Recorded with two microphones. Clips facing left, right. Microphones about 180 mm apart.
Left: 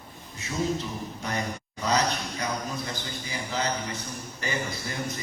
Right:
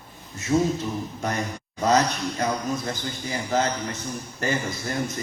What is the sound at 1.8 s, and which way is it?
A man's voice, 50° right (ahead or behind).